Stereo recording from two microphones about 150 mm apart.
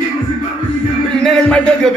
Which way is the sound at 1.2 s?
5° left (ahead or behind).